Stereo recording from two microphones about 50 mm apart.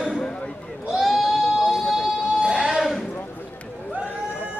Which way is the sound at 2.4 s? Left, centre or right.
Centre.